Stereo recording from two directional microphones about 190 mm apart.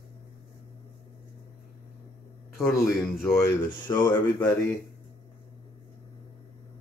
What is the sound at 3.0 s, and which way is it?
A man's voice, 15° left (ahead or behind).